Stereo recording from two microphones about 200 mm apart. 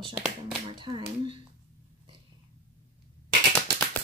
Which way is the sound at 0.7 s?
25° right (ahead or behind).